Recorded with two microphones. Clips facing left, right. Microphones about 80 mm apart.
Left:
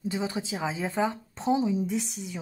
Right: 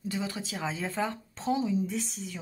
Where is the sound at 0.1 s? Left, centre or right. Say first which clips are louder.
Left 2 dB; centre.